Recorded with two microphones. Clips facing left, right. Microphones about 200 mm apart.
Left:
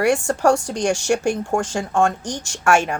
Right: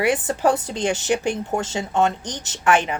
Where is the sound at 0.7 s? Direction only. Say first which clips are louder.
Left 2 dB; 45° left (ahead or behind).